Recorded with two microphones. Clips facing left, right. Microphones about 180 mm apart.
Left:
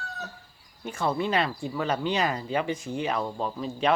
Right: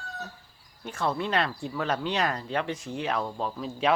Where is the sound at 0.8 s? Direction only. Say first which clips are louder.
Left 2 dB; centre (ahead or behind).